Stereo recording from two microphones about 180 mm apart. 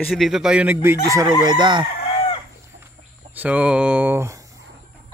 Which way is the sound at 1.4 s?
25° right (ahead or behind).